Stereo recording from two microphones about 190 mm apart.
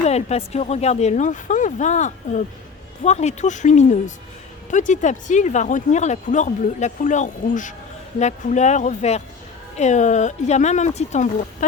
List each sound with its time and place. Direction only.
0.0 s speech: 35° left (ahead or behind)